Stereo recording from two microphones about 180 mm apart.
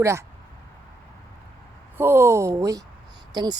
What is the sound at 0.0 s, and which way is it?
Speech, 15° right (ahead or behind).